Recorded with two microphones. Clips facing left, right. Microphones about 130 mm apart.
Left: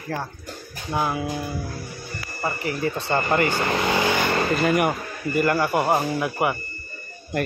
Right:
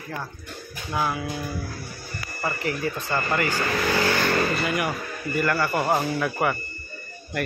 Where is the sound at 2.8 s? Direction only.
30° left (ahead or behind).